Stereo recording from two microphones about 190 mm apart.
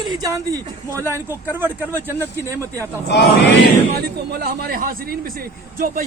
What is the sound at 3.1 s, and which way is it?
Speech, 60° left (ahead or behind).